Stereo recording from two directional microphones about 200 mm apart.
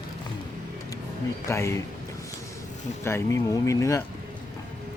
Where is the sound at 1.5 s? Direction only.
15° left (ahead or behind).